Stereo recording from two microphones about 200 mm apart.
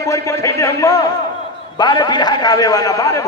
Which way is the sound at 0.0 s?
15° left (ahead or behind).